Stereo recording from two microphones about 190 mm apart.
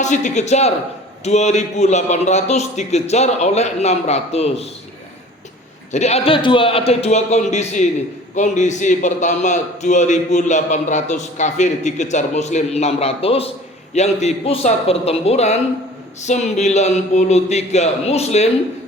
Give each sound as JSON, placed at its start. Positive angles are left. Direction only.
{"t": 0.0, "sound": "a man's voice", "side_deg": 40}
{"t": 5.9, "sound": "a man's voice", "side_deg": 35}